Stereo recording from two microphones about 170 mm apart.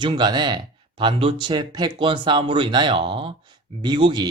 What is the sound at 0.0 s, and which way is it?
Speech, 25° right (ahead or behind).